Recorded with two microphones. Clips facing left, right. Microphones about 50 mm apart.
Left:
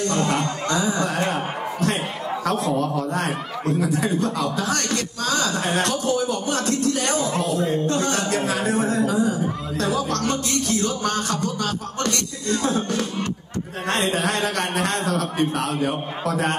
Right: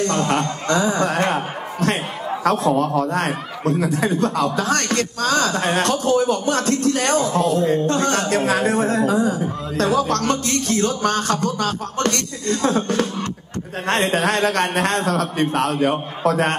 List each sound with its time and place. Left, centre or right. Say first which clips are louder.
0.0 s a man's voice: right 2 dB; right